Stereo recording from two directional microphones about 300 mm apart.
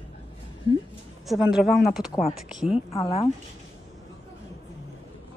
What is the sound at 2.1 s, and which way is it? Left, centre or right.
Speech, left.